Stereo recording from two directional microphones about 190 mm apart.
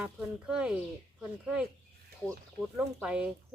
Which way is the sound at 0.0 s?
5° right (ahead or behind).